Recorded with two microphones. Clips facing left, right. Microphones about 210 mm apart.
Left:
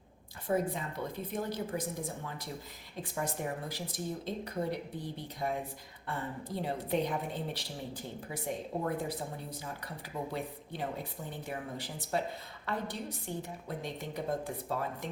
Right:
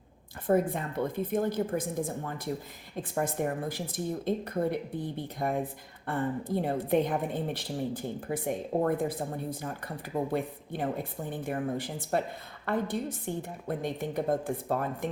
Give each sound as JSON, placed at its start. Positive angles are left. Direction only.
{"t": 0.4, "sound": "a woman's voice", "side_deg": -55}